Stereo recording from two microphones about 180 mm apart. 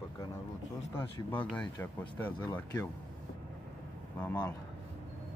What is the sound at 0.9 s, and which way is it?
Speech, 10° left (ahead or behind).